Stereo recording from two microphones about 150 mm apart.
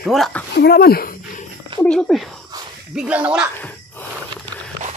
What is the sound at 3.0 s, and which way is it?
Speech, 10° right (ahead or behind).